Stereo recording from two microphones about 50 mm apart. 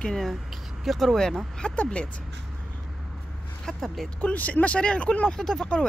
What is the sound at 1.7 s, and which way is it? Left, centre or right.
Speech, left.